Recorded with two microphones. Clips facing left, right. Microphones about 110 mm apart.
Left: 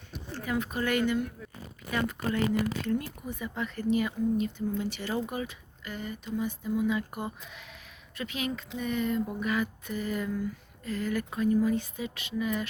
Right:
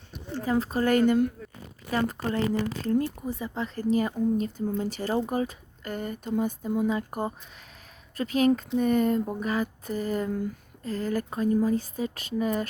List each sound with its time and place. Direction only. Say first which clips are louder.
0.4 s speech: right 6 dB; 35° right (ahead or behind)